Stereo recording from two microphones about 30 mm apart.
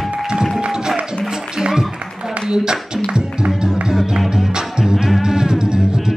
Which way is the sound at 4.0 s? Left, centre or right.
Centre.